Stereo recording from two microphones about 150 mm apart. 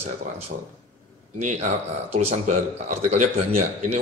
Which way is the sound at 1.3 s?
50° right (ahead or behind).